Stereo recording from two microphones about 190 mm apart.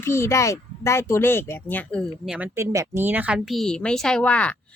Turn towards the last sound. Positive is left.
turn(degrees=5)  # may be behind; listen again after turning